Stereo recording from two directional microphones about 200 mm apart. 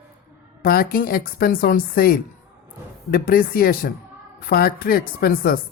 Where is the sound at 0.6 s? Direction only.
45° left (ahead or behind).